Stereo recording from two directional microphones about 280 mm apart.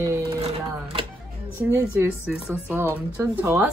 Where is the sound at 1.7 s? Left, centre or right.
Centre.